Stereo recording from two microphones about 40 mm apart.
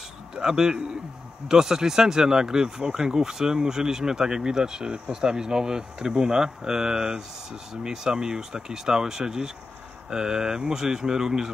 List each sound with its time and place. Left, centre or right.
0.4 s speech: centre